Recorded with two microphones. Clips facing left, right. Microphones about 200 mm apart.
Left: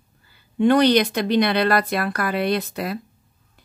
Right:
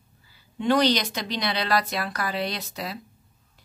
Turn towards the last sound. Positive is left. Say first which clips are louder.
# left 10 dB
turn(degrees=55)  # may be behind; listen again after turning